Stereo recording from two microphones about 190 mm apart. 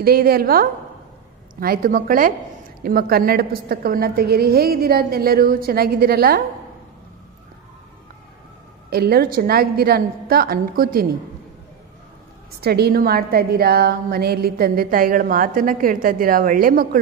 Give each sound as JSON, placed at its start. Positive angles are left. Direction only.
{"t": 0.0, "sound": "a woman's voice", "side_deg": -55}
{"t": 8.9, "sound": "a woman's voice", "side_deg": -55}
{"t": 12.5, "sound": "a woman's voice", "side_deg": -55}